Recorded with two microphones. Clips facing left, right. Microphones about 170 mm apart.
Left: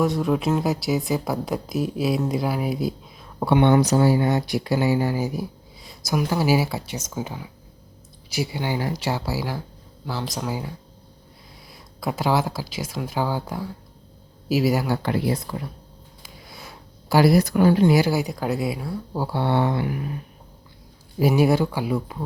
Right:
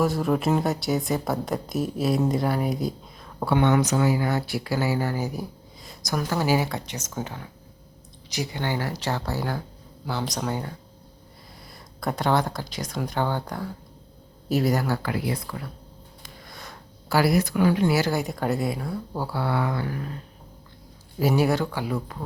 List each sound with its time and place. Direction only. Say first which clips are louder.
0.0 s speech: left 1 dB; centre (ahead or behind)
3.4 s speech: left 4 dB; 25° left (ahead or behind)
5.8 s a sound: left 4 dB; 5° left (ahead or behind)
6.2 s speech: left 2 dB; 10° left (ahead or behind)
11.7 s speech: left 1 dB; centre (ahead or behind)
14.9 s speech: left 4 dB; 25° left (ahead or behind)
16.2 s a sound: left 1 dB; 5° left (ahead or behind)
17.3 s speech: left 4 dB; 40° left (ahead or behind)
17.8 s speech: left 4 dB; 15° left (ahead or behind)
18.1 s speech: left 2 dB; centre (ahead or behind)
19.3 s speech: left 5 dB; 25° left (ahead or behind)
21.2 s speech: left 3 dB; 15° left (ahead or behind)